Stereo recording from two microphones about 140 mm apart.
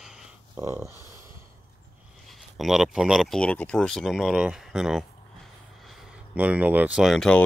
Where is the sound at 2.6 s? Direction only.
5° right (ahead or behind).